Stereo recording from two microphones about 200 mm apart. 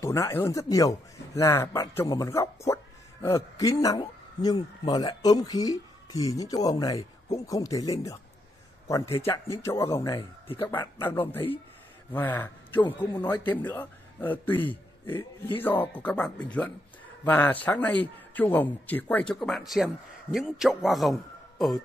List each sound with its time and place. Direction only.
0.0 s a man's voice: 15° left (ahead or behind)